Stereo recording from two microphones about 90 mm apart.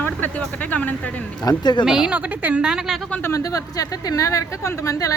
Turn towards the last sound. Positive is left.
turn(degrees=40)  # may be behind; listen again after turning